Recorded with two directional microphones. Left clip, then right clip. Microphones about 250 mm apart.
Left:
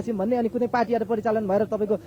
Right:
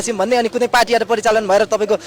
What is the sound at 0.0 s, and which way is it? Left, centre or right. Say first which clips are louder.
A man's voice: right 9 dB; centre.